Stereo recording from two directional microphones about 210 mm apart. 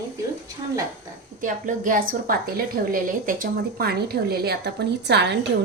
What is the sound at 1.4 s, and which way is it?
A woman's voice, 40° right (ahead or behind).